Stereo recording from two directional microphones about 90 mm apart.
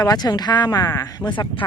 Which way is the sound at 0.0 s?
45° left (ahead or behind).